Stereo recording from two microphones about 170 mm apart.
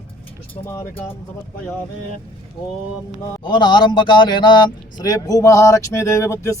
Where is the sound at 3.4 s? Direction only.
25° left (ahead or behind).